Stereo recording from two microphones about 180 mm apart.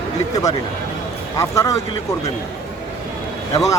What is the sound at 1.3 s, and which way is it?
Speech, 15° left (ahead or behind).